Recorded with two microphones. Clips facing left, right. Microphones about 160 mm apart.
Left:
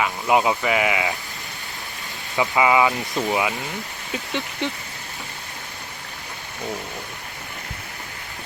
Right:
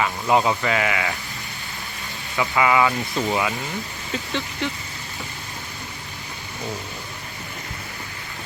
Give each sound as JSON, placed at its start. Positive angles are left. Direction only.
{"t": 0.0, "sound": "speech", "side_deg": 10}
{"t": 2.3, "sound": "speech", "side_deg": 20}